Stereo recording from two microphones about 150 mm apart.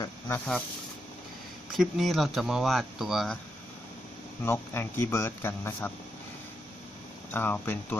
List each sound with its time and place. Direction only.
0.0 s snake: 15° left (ahead or behind)
1.7 s speech: centre (ahead or behind)
4.4 s speech: 15° left (ahead or behind)
7.3 s speech: 15° left (ahead or behind)